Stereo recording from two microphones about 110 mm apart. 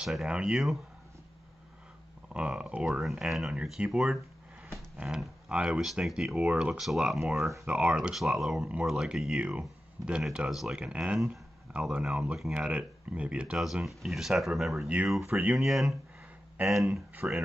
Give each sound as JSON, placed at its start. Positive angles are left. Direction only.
{"t": 0.0, "sound": "speech", "side_deg": -5}
{"t": 2.3, "sound": "speech", "side_deg": -10}
{"t": 15.2, "sound": "speech", "side_deg": -20}
{"t": 15.5, "sound": "speech", "side_deg": 0}
{"t": 17.1, "sound": "speech", "side_deg": -15}